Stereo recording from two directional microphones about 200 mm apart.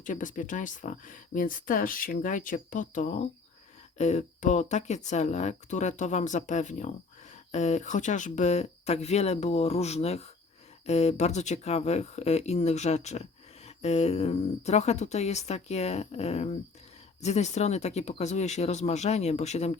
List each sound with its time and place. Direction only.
0.0 s speech: 40° left (ahead or behind)